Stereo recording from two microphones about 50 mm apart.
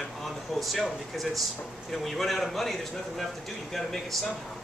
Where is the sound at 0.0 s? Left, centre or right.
Centre.